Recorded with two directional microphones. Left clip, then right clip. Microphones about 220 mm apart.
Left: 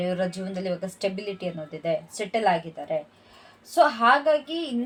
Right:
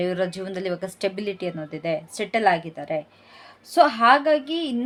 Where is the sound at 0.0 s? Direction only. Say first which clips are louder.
Right 2 dB; 40° right (ahead or behind).